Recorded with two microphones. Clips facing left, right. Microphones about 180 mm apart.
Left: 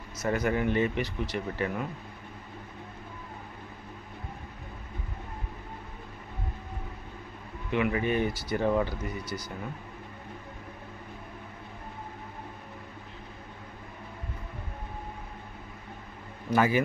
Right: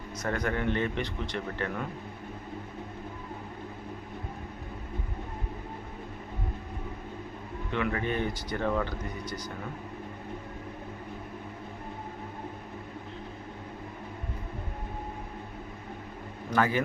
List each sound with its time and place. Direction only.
0.2 s speech: 5° left (ahead or behind)
7.7 s speech: 10° left (ahead or behind)
8.6 s speech: 20° left (ahead or behind)
9.2 s speech: 10° left (ahead or behind)
16.5 s speech: 10° left (ahead or behind)